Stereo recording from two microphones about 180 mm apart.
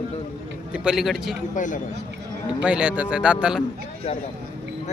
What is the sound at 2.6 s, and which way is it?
Speech, 10° right (ahead or behind).